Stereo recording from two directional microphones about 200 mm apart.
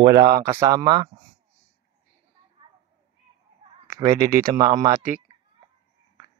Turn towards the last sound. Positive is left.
turn(degrees=-20)  # may be behind; listen again after turning